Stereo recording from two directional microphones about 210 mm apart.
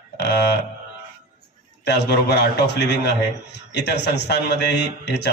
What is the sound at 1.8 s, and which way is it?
A man's voice, 55° left (ahead or behind).